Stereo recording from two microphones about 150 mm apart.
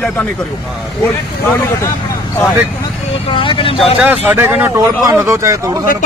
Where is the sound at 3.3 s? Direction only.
35° left (ahead or behind).